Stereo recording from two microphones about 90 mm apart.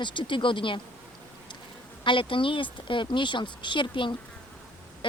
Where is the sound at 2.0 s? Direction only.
70° left (ahead or behind).